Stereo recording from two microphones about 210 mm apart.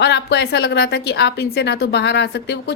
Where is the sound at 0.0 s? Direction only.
55° left (ahead or behind).